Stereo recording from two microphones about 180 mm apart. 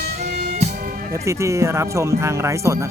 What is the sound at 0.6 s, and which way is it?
Music, 50° right (ahead or behind).